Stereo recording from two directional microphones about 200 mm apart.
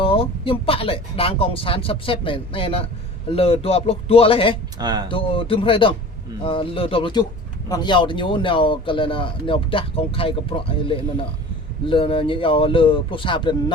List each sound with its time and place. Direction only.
0.0 s speech: 25° left (ahead or behind)
4.8 s speech: 20° right (ahead or behind)
5.0 s speech: 25° left (ahead or behind)